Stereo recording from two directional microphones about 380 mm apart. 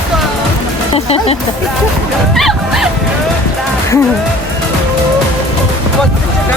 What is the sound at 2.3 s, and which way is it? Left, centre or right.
Music, centre.